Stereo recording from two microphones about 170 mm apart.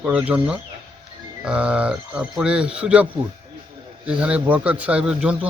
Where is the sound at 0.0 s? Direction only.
5° right (ahead or behind).